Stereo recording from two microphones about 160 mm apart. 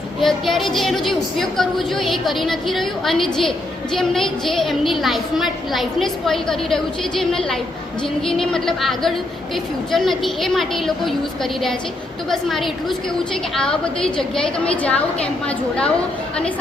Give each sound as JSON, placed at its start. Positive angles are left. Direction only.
{"t": 0.2, "sound": "a woman's voice", "side_deg": 0}
{"t": 12.3, "sound": "a woman's voice", "side_deg": 0}